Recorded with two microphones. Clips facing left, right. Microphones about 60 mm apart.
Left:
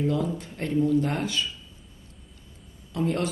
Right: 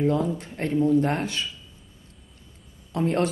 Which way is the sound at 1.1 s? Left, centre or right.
Right.